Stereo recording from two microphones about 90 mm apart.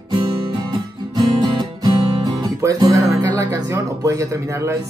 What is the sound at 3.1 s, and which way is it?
Speech, 40° right (ahead or behind).